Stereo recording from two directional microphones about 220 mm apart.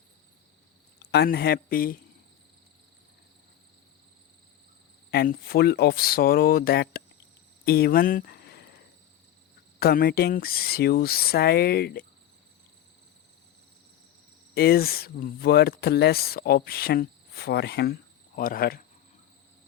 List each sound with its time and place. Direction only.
1.1 s speech: 50° left (ahead or behind)
5.1 s speech: 40° left (ahead or behind)
7.6 s cricket: 45° left (ahead or behind)
9.8 s speech: 45° left (ahead or behind)
14.5 s speech: 45° left (ahead or behind)